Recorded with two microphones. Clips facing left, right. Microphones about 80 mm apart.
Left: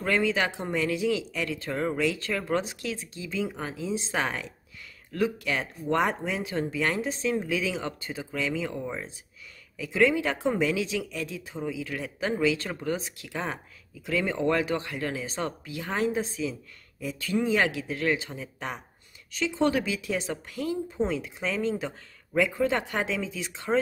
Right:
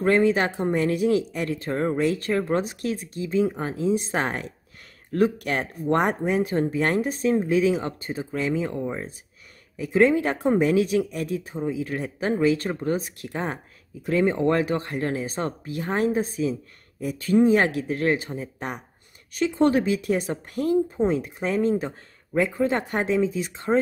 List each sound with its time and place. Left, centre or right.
0.0 s speech: right
8.7 s speech: right
9.8 s speech: right